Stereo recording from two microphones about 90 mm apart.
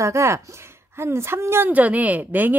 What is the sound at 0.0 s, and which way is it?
A woman's voice, 35° right (ahead or behind).